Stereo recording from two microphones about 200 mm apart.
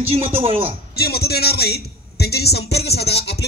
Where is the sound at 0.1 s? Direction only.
30° right (ahead or behind).